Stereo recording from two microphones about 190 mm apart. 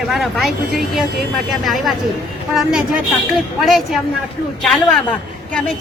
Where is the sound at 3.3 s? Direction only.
Centre (ahead or behind).